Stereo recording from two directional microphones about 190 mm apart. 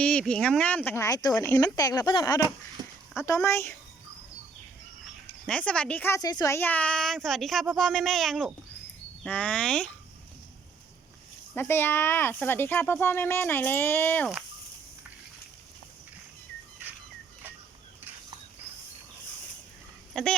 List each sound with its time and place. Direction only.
0.0 s speech: 5° left (ahead or behind)
2.8 s a sound: 20° right (ahead or behind)
3.2 s speech: 15° left (ahead or behind)
5.0 s speech: 5° left (ahead or behind)
11.5 s speech: 10° left (ahead or behind)